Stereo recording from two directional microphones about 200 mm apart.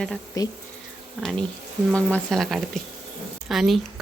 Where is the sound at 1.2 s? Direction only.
Centre (ahead or behind).